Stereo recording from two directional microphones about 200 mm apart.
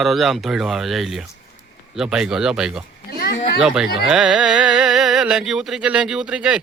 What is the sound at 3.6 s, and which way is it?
Speech, 5° right (ahead or behind).